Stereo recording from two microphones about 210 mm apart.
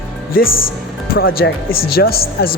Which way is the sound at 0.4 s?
45° left (ahead or behind).